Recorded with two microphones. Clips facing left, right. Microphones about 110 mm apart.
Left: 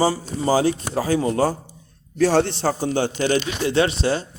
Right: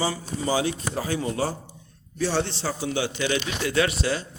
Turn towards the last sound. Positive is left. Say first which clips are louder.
# left 4 dB
turn(degrees=30)  # may be behind; listen again after turning